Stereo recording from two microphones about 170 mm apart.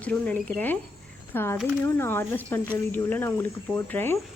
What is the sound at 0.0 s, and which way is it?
Speech, 5° left (ahead or behind).